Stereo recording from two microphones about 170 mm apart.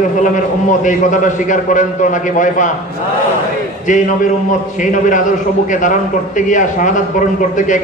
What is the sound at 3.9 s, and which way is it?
A man's voice, 50° left (ahead or behind).